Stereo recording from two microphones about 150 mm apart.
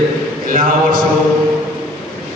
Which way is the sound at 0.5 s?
65° right (ahead or behind).